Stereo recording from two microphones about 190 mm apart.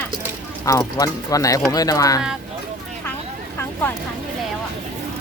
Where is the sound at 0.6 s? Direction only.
15° left (ahead or behind).